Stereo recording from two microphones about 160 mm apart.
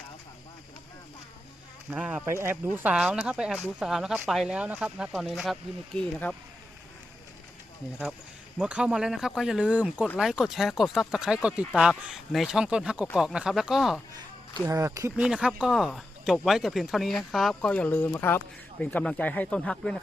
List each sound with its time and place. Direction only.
1.9 s speech: 10° right (ahead or behind); by 6.3 s 10° left (ahead or behind)
8.5 s speech: 5° right (ahead or behind)
14.5 s speech: 20° right (ahead or behind)
15.1 s speech: 5° right (ahead or behind)